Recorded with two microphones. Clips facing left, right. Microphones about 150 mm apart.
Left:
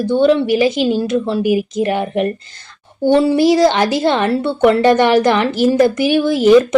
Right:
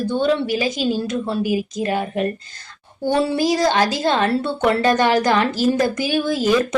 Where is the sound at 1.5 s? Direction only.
25° left (ahead or behind).